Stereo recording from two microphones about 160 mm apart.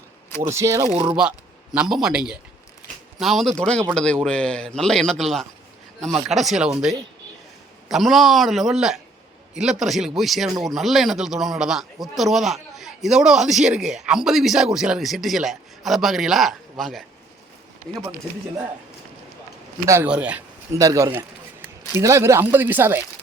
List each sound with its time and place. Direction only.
0.4 s speech: 20° right (ahead or behind)
1.7 s speech: 5° right (ahead or behind)
19.8 s speech: 15° right (ahead or behind)
20.7 s speech: 20° right (ahead or behind)